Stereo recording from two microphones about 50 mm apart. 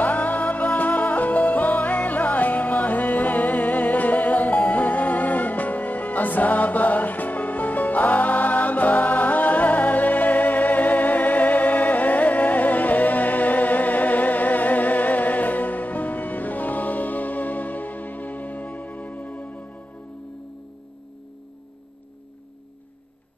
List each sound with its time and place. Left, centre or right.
0.0 s music: left